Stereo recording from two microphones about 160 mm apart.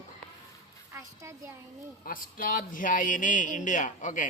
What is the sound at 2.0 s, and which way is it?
Speech, 60° left (ahead or behind).